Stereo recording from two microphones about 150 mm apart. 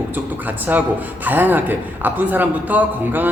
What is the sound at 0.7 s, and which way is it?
A man's voice, 10° right (ahead or behind).